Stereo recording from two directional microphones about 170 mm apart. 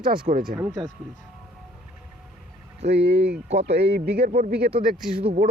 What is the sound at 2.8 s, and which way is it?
Speech, 80° right.